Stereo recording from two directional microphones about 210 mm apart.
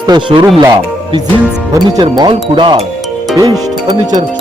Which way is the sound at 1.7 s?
20° right (ahead or behind).